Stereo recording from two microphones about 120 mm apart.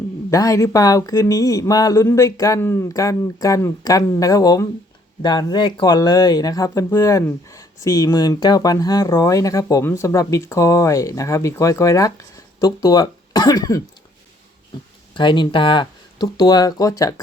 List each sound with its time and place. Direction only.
0.3 s speech: 25° left (ahead or behind)
15.1 s speech: 40° left (ahead or behind)